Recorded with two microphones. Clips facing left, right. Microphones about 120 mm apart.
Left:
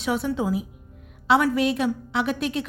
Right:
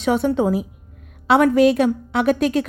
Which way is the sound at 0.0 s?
55° right (ahead or behind).